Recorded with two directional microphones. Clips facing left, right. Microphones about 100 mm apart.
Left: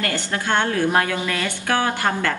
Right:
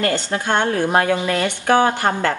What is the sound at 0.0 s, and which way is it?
A woman's voice, 20° right (ahead or behind).